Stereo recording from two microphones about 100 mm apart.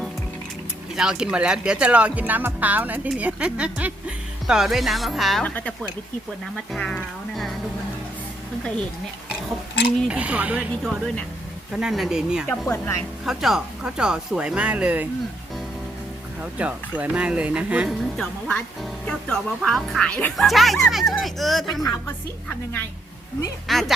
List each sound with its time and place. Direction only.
0.9 s speech: 5° right (ahead or behind)
5.4 s speech: 10° left (ahead or behind)
6.7 s speech: 5° left (ahead or behind)
10.1 s speech: 10° right (ahead or behind)
12.5 s speech: 15° left (ahead or behind)
13.2 s speech: centre (ahead or behind)
16.4 s speech: 15° right (ahead or behind)
17.8 s speech: 10° left (ahead or behind)
20.3 s speech: centre (ahead or behind)
22.4 s a woman's voice: 20° left (ahead or behind)
23.6 s speech: centre (ahead or behind)